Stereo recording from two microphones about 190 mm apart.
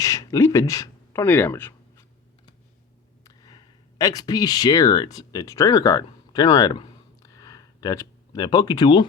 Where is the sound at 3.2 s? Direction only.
20° left (ahead or behind).